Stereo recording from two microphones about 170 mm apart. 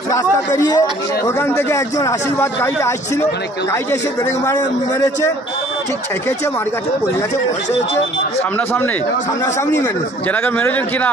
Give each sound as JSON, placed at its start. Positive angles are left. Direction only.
{"t": 0.1, "sound": "a man's voice", "side_deg": 20}
{"t": 4.4, "sound": "a man's voice", "side_deg": 20}
{"t": 8.4, "sound": "a man's voice", "side_deg": 15}
{"t": 10.2, "sound": "a man's voice", "side_deg": 10}